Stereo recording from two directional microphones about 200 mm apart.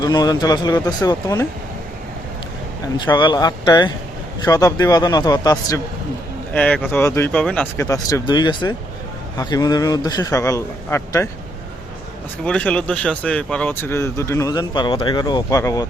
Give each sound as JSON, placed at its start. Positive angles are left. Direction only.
{"t": 0.0, "sound": "speech", "side_deg": 20}
{"t": 3.1, "sound": "speech", "side_deg": 20}
{"t": 6.5, "sound": "speech", "side_deg": 5}
{"t": 6.9, "sound": "speech", "side_deg": 15}
{"t": 12.5, "sound": "speech", "side_deg": 5}